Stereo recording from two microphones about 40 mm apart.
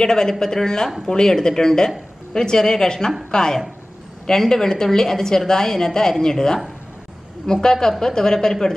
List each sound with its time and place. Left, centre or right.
0.0 s a woman's voice: centre